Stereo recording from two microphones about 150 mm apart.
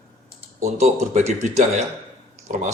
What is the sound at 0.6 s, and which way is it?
Speech, 50° right (ahead or behind).